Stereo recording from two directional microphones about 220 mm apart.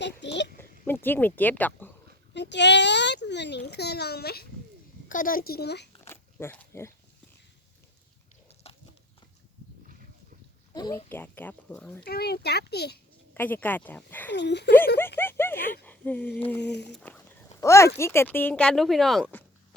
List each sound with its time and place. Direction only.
0.2 s a sound: 50° left (ahead or behind)
0.6 s a sound: 10° left (ahead or behind)
1.0 s speech: 10° left (ahead or behind)
2.3 s a child's voice: 50° left (ahead or behind)
6.1 s pig: 10° left (ahead or behind)
8.7 s a sound: 25° left (ahead or behind)
10.8 s speech: 15° left (ahead or behind)
12.0 s a child's voice: 45° left (ahead or behind)
13.3 s speech: 10° left (ahead or behind)
14.3 s a child's voice: 50° left (ahead or behind)
15.2 s speech: 10° left (ahead or behind)
16.6 s a child's voice: 50° left (ahead or behind)
16.9 s speech: 5° left (ahead or behind)